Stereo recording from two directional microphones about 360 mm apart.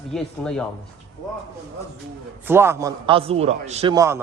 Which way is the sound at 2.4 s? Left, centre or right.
Centre.